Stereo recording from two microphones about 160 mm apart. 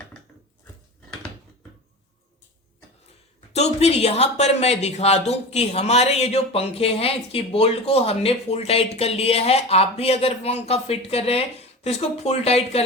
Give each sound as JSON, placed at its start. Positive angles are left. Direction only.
{"t": 3.5, "sound": "speech", "side_deg": 40}